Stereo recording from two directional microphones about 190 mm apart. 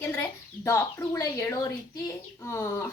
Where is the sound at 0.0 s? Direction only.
15° left (ahead or behind).